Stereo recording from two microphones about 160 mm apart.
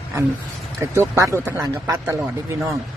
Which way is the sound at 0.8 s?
15° right (ahead or behind).